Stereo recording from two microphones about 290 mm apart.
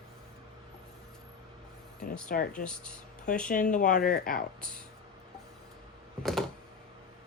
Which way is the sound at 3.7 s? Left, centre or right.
Left.